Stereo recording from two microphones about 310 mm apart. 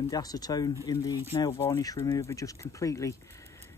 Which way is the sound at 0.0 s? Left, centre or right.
Centre.